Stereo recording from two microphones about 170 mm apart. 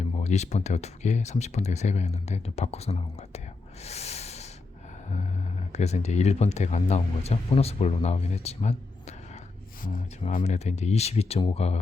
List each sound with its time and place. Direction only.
0.0 s speech: 40° left (ahead or behind)
3.8 s snort: 40° left (ahead or behind)
5.1 s speech: 40° left (ahead or behind)
9.8 s speech: 55° left (ahead or behind); by 11.8 s 40° left (ahead or behind)